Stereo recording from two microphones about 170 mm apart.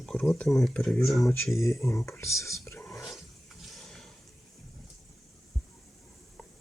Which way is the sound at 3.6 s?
Centre (ahead or behind).